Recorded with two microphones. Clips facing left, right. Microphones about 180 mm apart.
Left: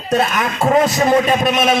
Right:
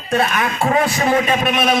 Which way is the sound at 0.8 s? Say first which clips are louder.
Left 3 dB; 40° left (ahead or behind).